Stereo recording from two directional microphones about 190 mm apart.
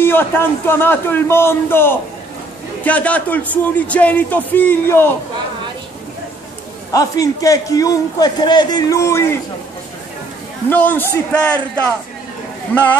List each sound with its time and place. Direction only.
0.0 s a man's voice: 10° left (ahead or behind)
6.9 s a man's voice: 20° left (ahead or behind)
10.7 s a man's voice: 10° left (ahead or behind)